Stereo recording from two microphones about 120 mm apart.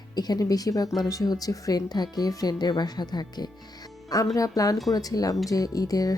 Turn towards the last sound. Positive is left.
turn(degrees=30)  # may be behind; listen again after turning